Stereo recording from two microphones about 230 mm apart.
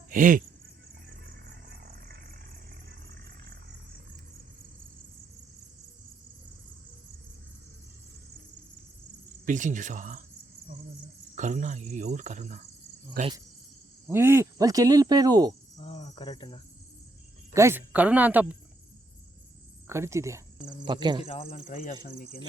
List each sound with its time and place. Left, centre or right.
0.1 s speech: right
1.5 s a sound: right
9.5 s cricket: right
11.3 s cricket: right
14.1 s speech: centre
15.8 s cricket: left
17.5 s speech: centre
19.9 s speech: centre
21.2 s speech: left
22.0 s speech: left